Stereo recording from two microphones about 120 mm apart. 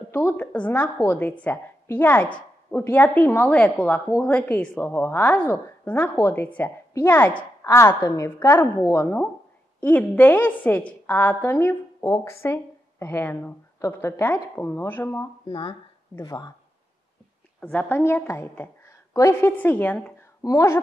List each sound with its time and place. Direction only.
0.1 s a woman's voice: 20° left (ahead or behind)
15.4 s speech: 40° left (ahead or behind)
17.6 s a woman's voice: 10° left (ahead or behind)
20.4 s a woman's voice: 25° left (ahead or behind)